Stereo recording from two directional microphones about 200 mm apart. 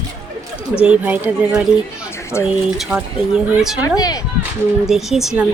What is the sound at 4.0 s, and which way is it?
Speech, 20° left (ahead or behind).